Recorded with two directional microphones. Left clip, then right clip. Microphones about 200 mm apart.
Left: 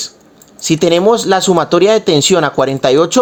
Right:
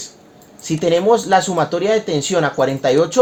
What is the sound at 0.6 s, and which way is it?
Speech, 35° left (ahead or behind).